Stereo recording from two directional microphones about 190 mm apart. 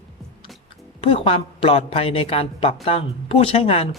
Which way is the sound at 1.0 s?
30° left (ahead or behind).